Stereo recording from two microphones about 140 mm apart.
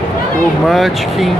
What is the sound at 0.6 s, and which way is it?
Speech, centre (ahead or behind).